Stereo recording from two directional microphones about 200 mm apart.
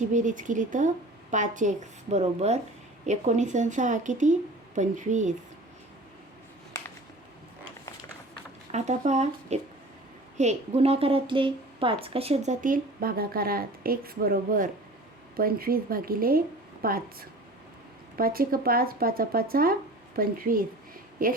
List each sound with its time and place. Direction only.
0.0 s a woman's voice: 40° right (ahead or behind)
8.7 s a woman's voice: 35° right (ahead or behind)